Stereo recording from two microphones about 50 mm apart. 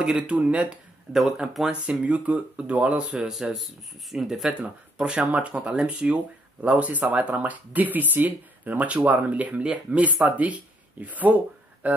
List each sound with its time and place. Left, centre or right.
0.0 s speech: right
1.1 s speech: centre
1.7 s speech: right
3.2 s speech: centre
4.5 s speech: centre; by 11.9 s right